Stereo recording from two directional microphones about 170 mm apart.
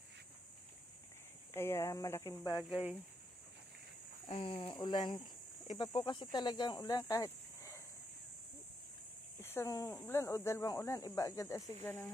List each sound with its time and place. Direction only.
1.5 s speech: 15° left (ahead or behind)
2.6 s speech: 5° right (ahead or behind)
4.3 s speech: 30° left (ahead or behind)
9.4 s speech: 15° left (ahead or behind)